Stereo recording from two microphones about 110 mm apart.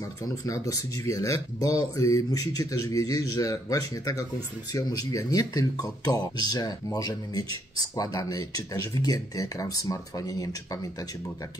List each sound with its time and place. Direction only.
0.5 s speech: 30° left (ahead or behind)